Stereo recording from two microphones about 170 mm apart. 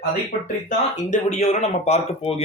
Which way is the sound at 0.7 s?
45° left (ahead or behind).